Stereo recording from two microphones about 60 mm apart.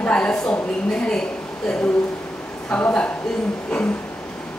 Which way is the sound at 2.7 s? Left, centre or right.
Left.